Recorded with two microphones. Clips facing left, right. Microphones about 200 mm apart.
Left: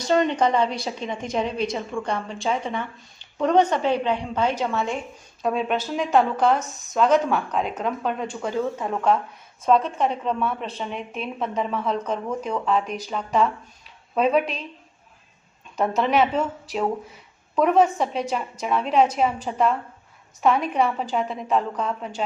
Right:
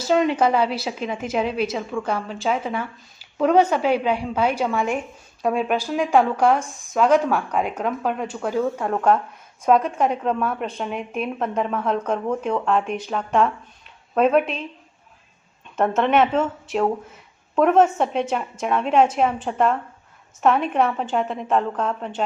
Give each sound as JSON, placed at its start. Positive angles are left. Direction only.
{"t": 0.0, "sound": "a woman's voice", "side_deg": -5}
{"t": 9.6, "sound": "a woman's voice", "side_deg": -5}
{"t": 16.0, "sound": "a woman's voice", "side_deg": 0}
{"t": 16.7, "sound": "speech", "side_deg": 40}
{"t": 17.5, "sound": "a woman's voice", "side_deg": 0}